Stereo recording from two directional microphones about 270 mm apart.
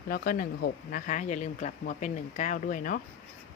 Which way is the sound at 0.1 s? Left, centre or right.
Left.